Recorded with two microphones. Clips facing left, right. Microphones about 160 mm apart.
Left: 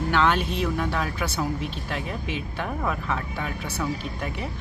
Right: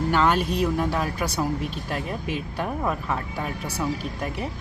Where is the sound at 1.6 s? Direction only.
45° right (ahead or behind).